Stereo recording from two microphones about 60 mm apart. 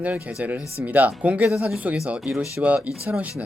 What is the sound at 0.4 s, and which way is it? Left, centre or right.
Speech, right.